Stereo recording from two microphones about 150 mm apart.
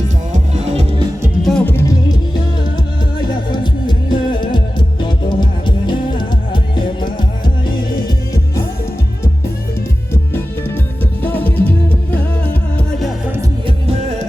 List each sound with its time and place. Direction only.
0.5 s music: 45° right (ahead or behind)
1.4 s music: 5° left (ahead or behind); by 2.1 s 20° left (ahead or behind)
3.5 s music: 30° left (ahead or behind)
11.2 s music: 10° left (ahead or behind)
13.7 s music: 45° right (ahead or behind)